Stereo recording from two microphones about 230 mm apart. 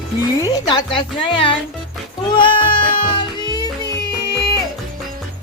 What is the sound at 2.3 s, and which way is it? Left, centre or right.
Music, left.